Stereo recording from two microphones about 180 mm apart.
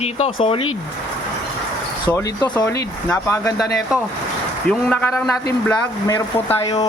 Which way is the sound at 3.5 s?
Centre (ahead or behind).